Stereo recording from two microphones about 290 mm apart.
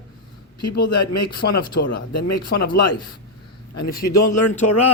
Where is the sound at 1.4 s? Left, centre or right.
Left.